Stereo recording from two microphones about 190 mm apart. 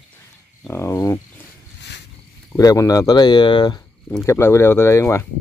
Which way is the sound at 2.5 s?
20° left (ahead or behind).